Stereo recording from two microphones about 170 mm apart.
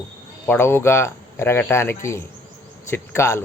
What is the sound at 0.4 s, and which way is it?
Speech, 15° left (ahead or behind).